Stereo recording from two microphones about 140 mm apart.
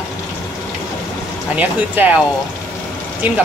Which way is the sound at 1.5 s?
10° right (ahead or behind).